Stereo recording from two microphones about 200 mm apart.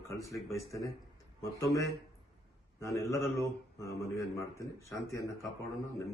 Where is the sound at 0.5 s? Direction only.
15° left (ahead or behind).